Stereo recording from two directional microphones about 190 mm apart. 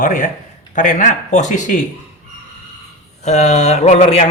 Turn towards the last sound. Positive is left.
turn(degrees=35)  # may be behind; listen again after turning